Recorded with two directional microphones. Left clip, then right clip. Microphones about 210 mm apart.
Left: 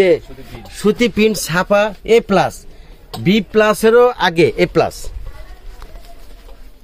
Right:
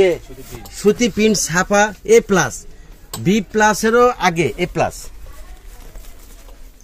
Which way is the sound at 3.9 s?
50° left (ahead or behind).